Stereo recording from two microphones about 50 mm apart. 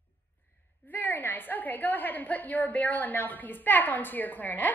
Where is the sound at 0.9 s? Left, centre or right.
Left.